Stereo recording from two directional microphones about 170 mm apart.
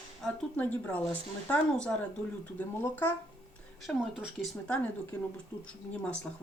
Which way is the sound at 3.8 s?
5° right (ahead or behind).